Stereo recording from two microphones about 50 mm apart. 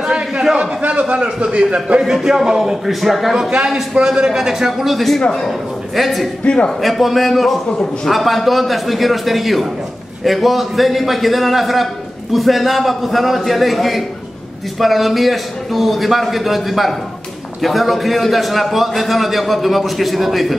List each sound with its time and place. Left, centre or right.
0.0 s a sound: centre
0.6 s a man's voice: right
2.0 s a man's voice: centre
3.5 s a man's voice: centre
6.4 s a man's voice: centre
6.8 s a man's voice: centre